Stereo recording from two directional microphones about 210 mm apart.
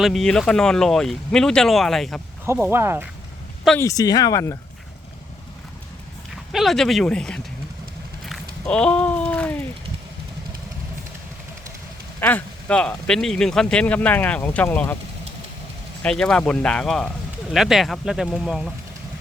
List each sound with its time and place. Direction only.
0.0 s speech: centre (ahead or behind)
2.5 s speech: 10° right (ahead or behind)
3.8 s speech: 15° left (ahead or behind)
6.3 s speech: centre (ahead or behind)
12.2 s speech: 5° left (ahead or behind)
16.0 s speech: 5° left (ahead or behind)